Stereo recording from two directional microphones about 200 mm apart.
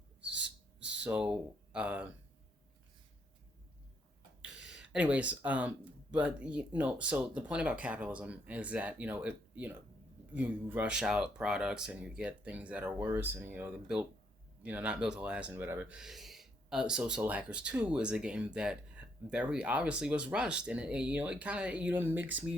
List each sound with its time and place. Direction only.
0.9 s speech: 5° right (ahead or behind)
4.4 s speech: 5° right (ahead or behind)